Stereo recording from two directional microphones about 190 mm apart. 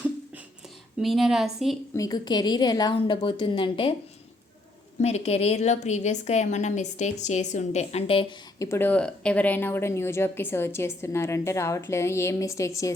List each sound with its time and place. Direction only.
0.9 s a woman's voice: centre (ahead or behind)
2.0 s a woman's voice: 20° left (ahead or behind)
4.9 s a woman's voice: 35° left (ahead or behind)
8.5 s speech: 15° left (ahead or behind)